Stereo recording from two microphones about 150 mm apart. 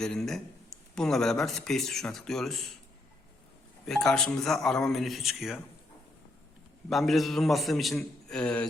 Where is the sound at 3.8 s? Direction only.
5° left (ahead or behind).